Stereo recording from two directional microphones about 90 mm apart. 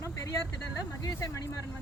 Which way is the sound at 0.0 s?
40° left (ahead or behind).